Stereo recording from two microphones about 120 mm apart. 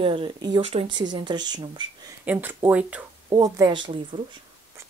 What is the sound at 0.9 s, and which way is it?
Speech, 40° right (ahead or behind).